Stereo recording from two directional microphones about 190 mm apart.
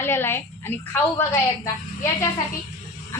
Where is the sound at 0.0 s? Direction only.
10° left (ahead or behind).